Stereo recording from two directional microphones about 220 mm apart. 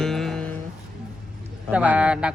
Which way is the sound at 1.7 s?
5° right (ahead or behind).